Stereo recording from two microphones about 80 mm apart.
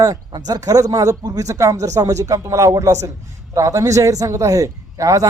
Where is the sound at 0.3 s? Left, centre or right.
Right.